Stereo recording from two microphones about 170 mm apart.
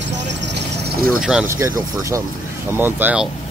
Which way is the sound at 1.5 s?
15° right (ahead or behind).